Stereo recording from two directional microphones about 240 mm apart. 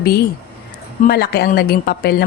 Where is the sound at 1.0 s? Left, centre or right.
Left.